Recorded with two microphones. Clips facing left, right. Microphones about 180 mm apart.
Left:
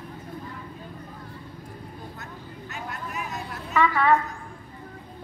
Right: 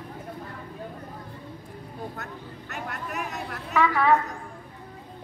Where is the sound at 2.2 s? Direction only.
65° right (ahead or behind).